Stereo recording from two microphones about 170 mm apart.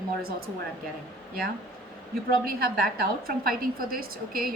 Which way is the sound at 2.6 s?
60° right (ahead or behind).